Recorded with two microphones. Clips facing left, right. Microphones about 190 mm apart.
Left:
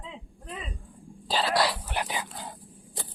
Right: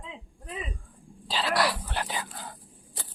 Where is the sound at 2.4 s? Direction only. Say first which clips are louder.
Left 2 dB; 20° left (ahead or behind).